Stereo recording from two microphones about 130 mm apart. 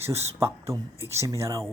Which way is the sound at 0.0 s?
20° right (ahead or behind).